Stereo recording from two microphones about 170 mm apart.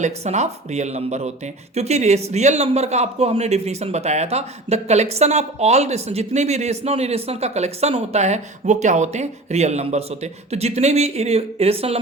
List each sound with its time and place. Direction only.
0.0 s speech: 40° right (ahead or behind)